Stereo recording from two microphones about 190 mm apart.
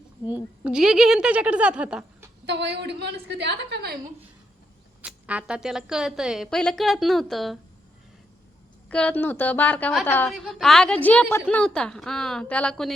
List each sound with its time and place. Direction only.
0.6 s a woman's voice: 5° right (ahead or behind)
2.5 s a woman's voice: 65° right (ahead or behind)
5.0 s a woman's voice: 5° right (ahead or behind)
8.9 s a woman's voice: 5° left (ahead or behind)